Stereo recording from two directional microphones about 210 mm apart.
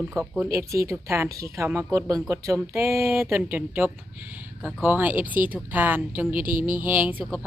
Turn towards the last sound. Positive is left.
turn(degrees=-5)  # may be behind; listen again after turning